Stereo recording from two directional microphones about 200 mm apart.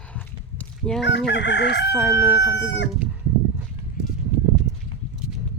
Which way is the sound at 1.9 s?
Centre (ahead or behind).